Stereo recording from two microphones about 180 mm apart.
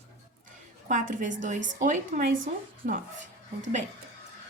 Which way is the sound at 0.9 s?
45° right (ahead or behind).